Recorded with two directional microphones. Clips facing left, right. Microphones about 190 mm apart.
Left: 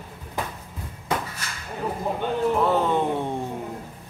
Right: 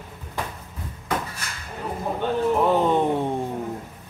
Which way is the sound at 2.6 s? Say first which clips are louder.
Right 4 dB; 15° right (ahead or behind).